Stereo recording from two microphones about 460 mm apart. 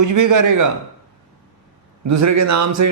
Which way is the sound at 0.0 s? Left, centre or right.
Right.